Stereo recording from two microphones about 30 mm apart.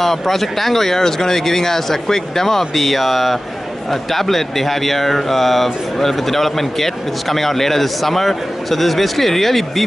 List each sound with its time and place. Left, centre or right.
0.0 s speech: centre
2.7 s speech: centre